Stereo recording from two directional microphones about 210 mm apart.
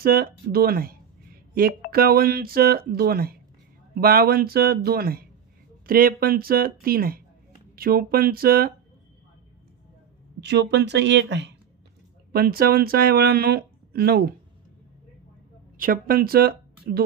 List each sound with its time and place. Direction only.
0.0 s speech: 45° right (ahead or behind)
10.4 s speech: 55° right (ahead or behind)
15.8 s a woman's voice: 45° right (ahead or behind)